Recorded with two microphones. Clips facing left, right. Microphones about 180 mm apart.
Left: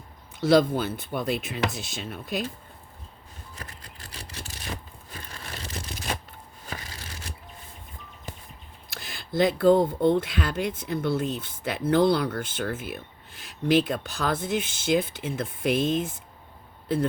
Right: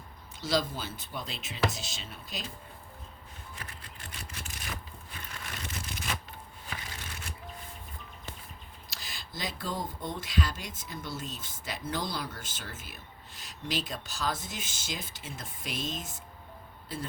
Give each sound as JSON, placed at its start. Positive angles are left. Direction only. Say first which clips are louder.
{"t": 0.3, "sound": "speech", "louder": "left 11 dB", "side_deg": 60}
{"t": 3.5, "sound": "a sound", "louder": "left 4 dB", "side_deg": 40}
{"t": 8.9, "sound": "speech", "louder": "left 12 dB", "side_deg": 55}